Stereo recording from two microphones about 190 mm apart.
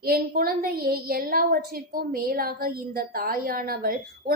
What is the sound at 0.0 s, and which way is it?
A woman's voice, 50° right (ahead or behind).